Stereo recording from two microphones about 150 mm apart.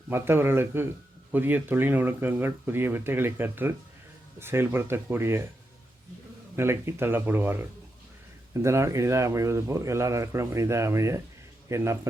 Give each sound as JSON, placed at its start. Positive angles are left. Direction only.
{"t": 0.1, "sound": "speech", "side_deg": -15}
{"t": 6.6, "sound": "a man's voice", "side_deg": -15}